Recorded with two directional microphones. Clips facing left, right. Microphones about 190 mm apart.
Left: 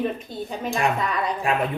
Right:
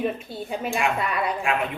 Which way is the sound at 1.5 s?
40° left (ahead or behind).